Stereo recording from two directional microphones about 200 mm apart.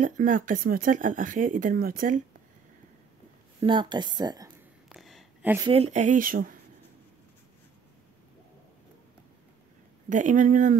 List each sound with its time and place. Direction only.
0.0 s speech: 40° right (ahead or behind)
3.6 s a woman's voice: 25° right (ahead or behind)
4.8 s a sound: centre (ahead or behind)
5.7 s speech: 30° right (ahead or behind)
10.0 s speech: 40° right (ahead or behind)